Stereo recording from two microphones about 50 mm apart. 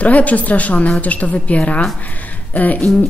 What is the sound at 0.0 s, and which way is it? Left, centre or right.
A woman's voice, left.